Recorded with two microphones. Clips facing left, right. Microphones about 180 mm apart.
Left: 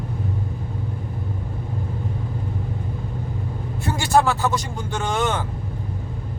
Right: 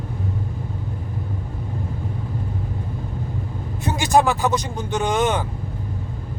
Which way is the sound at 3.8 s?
20° right (ahead or behind).